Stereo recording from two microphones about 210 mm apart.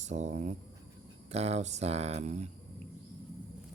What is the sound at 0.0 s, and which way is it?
Speech, 35° right (ahead or behind).